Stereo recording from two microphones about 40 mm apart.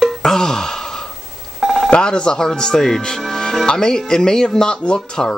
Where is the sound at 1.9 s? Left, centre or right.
Left.